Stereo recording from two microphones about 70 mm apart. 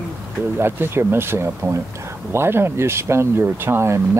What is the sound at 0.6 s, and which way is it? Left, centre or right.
Speech, right.